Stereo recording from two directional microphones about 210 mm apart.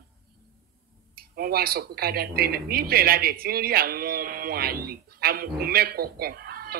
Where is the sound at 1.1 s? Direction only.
45° right (ahead or behind).